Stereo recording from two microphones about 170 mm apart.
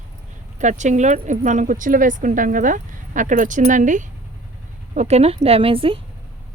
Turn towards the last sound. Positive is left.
turn(degrees=-30)  # may be behind; listen again after turning